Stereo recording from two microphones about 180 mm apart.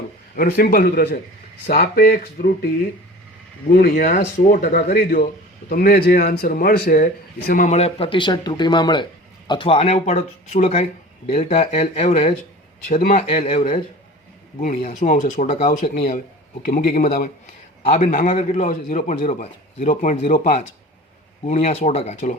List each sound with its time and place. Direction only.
0.3 s speech: 55° left (ahead or behind)
3.8 s a man's voice: 55° left (ahead or behind); by 12.3 s 35° left (ahead or behind)
13.0 s a man's voice: 45° left (ahead or behind)
13.2 s a man's voice: 35° left (ahead or behind); by 17.2 s 50° left (ahead or behind)
17.8 s a man's voice: 40° left (ahead or behind)